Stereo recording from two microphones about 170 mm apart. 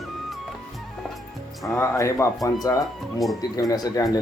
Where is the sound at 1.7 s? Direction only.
15° left (ahead or behind).